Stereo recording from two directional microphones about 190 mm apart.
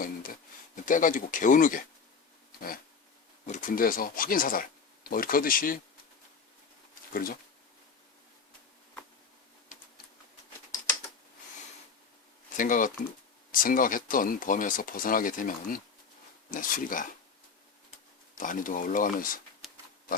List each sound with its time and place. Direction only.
0.9 s speech: 45° left (ahead or behind)
3.4 s speech: 40° left (ahead or behind)
7.1 s speech: 50° left (ahead or behind)
12.5 s speech: 45° left (ahead or behind)
18.3 s speech: 45° left (ahead or behind)
19.6 s pig: centre (ahead or behind)